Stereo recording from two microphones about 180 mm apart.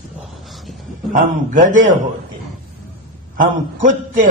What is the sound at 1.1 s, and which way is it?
Speech, 45° right (ahead or behind).